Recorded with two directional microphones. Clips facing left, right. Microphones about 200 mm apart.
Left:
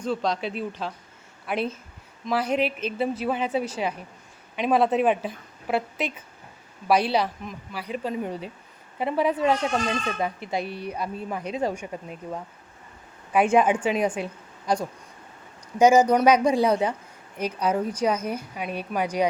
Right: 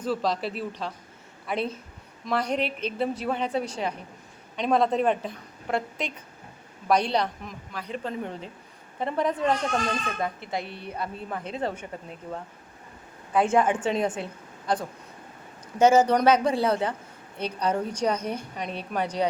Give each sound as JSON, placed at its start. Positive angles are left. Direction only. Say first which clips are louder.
{"t": 0.0, "sound": "a woman's voice", "louder": "left 1 dB", "side_deg": -5}
{"t": 10.6, "sound": "speech", "louder": "left 5 dB", "side_deg": -20}
{"t": 10.8, "sound": "a woman's voice", "louder": "left 3 dB", "side_deg": 15}
{"t": 13.3, "sound": "a woman's voice", "louder": "left 2 dB", "side_deg": 15}
{"t": 15.8, "sound": "a woman's voice", "louder": "left 2 dB", "side_deg": 10}